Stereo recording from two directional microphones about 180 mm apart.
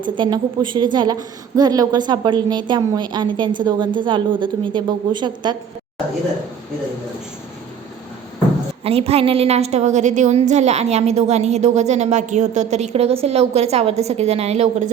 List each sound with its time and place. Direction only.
0.0 s a woman's voice: 25° right (ahead or behind)
8.8 s a woman's voice: 35° right (ahead or behind)